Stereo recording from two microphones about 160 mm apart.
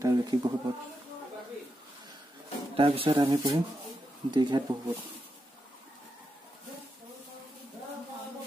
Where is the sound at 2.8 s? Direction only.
35° right (ahead or behind).